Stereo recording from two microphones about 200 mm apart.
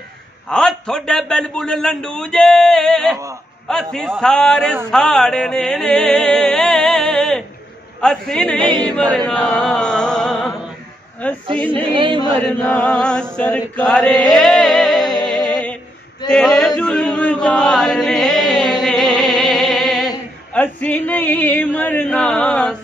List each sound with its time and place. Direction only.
0.5 s a man's voice: 5° left (ahead or behind)
9.3 s chant: 5° left (ahead or behind)
11.2 s mantra: 10° left (ahead or behind)
11.9 s speech: 25° right (ahead or behind)
12.4 s a man's voice: 5° left (ahead or behind)
13.4 s chant: 5° left (ahead or behind)
20.5 s female singing: 10° left (ahead or behind)
21.7 s mantra: 10° left (ahead or behind)